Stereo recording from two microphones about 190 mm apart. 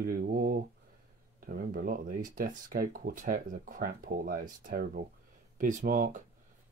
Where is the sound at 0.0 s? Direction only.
50° right (ahead or behind).